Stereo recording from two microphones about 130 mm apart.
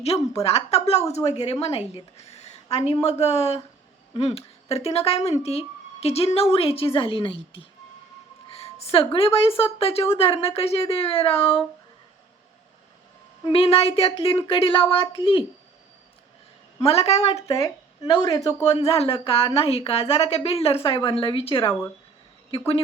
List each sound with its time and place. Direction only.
0.1 s speech: 35° left (ahead or behind)
0.4 s speech: 55° left (ahead or behind)
2.1 s a sound: 55° left (ahead or behind)
3.0 s speech: 55° left (ahead or behind)
8.4 s a sound: 50° left (ahead or behind)
9.1 s speech: 45° left (ahead or behind)
13.4 s speech: 50° left (ahead or behind)
16.8 s speech: 55° left (ahead or behind)
17.5 s speech: 25° left (ahead or behind)
18.6 s speech: 55° left (ahead or behind)